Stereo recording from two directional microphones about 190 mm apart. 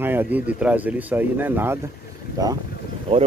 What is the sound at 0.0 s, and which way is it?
Speech, 10° right (ahead or behind).